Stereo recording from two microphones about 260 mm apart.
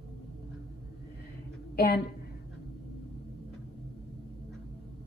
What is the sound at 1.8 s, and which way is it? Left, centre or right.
Speech, left.